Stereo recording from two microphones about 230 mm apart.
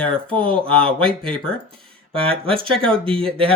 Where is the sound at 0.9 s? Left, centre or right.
Centre.